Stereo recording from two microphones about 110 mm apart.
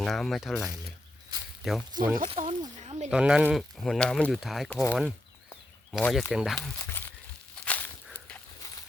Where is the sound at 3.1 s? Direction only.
10° right (ahead or behind).